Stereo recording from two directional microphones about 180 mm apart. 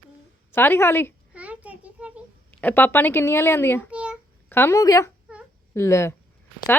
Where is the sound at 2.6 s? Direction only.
10° left (ahead or behind).